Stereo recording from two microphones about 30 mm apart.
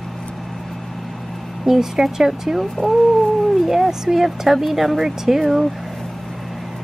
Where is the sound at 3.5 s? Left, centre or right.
Centre.